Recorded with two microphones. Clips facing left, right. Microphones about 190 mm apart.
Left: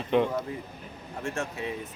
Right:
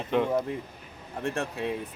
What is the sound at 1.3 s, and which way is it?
Speech, 60° right (ahead or behind).